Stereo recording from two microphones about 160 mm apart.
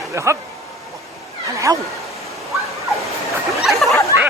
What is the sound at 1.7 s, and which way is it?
Speech, 15° right (ahead or behind).